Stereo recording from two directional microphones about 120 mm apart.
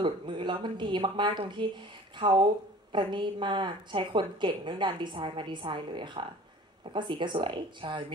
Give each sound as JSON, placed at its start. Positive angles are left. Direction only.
{"t": 0.0, "sound": "a woman's voice", "side_deg": -40}